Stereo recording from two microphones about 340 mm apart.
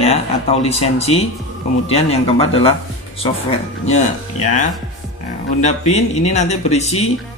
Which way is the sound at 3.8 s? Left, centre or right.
Centre.